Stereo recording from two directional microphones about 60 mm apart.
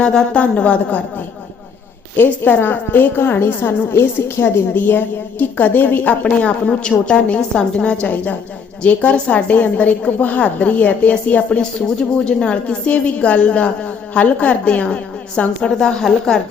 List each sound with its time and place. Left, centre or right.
0.0 s a woman's voice: centre
0.3 s a woman's voice: left
2.1 s a woman's voice: left
6.2 s a woman's voice: centre
8.0 s a woman's voice: left